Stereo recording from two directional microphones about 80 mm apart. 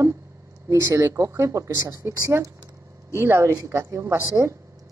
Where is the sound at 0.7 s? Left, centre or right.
Right.